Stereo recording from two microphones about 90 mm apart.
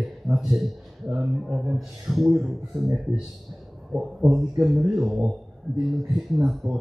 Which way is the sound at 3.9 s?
5° right (ahead or behind).